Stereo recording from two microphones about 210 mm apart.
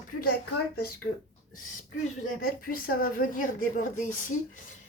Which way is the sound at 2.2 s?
45° left (ahead or behind).